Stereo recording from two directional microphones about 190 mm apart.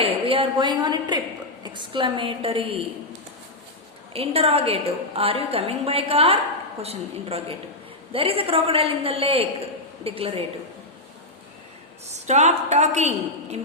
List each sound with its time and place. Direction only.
0.0 s a woman's voice: 30° right (ahead or behind)
4.1 s a woman's voice: 30° right (ahead or behind)
12.0 s a woman's voice: 35° right (ahead or behind)